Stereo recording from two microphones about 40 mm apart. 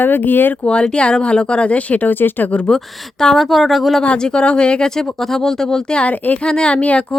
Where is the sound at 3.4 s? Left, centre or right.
Centre.